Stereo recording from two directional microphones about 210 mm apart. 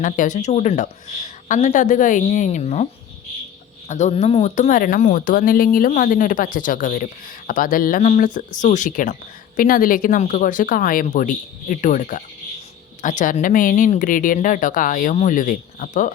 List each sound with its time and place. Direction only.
0.0 s speech: 35° left (ahead or behind)
3.8 s speech: 35° left (ahead or behind)